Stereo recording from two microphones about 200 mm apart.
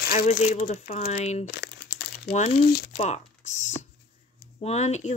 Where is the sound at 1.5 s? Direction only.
55° left (ahead or behind).